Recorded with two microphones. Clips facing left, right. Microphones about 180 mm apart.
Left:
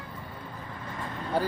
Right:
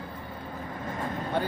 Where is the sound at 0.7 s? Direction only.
45° right (ahead or behind).